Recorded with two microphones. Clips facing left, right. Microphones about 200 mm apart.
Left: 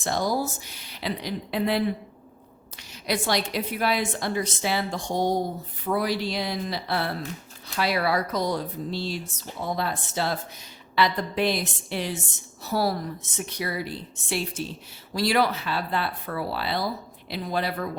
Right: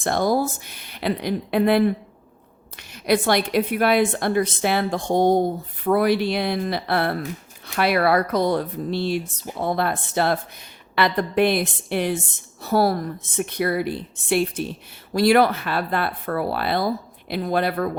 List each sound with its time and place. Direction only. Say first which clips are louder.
0.0 s speech: right 5 dB; 55° right (ahead or behind)
3.1 s speech: right 7 dB; 55° right (ahead or behind)